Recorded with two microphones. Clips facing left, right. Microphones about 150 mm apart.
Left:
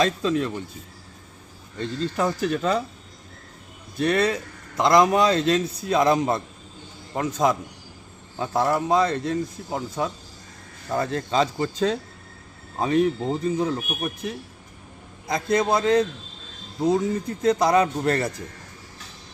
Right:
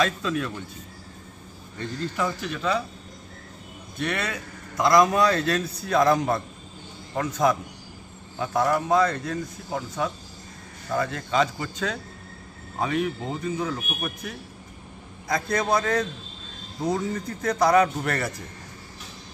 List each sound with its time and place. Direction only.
0.0 s speech: 30° left (ahead or behind)
2.1 s a man's voice: 40° left (ahead or behind)
3.9 s a man's voice: 35° left (ahead or behind)